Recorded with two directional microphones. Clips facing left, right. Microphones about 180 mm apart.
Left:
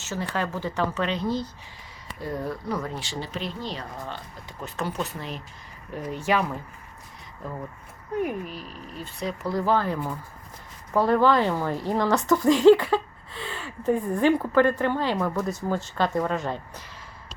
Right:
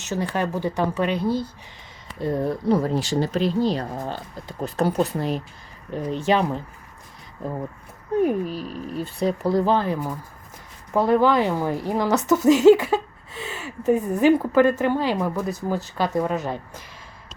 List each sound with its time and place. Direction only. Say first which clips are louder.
0.0 s a woman's voice: right 4 dB; 15° right (ahead or behind)
2.2 s speech: right 8 dB; 25° right (ahead or behind)
5.9 s speech: right 4 dB; 25° right (ahead or behind)
8.2 s a woman's voice: right 8 dB; 35° right (ahead or behind); by 16.8 s 10° right (ahead or behind)